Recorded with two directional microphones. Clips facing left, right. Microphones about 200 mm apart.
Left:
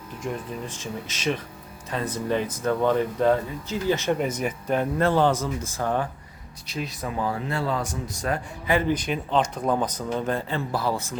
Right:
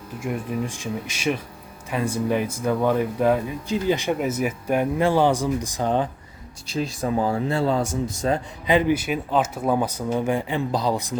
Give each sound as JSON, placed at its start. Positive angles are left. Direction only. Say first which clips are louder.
{"t": 0.2, "sound": "speech", "louder": "right 5 dB", "side_deg": -10}
{"t": 6.7, "sound": "speech", "louder": "right 6 dB", "side_deg": -30}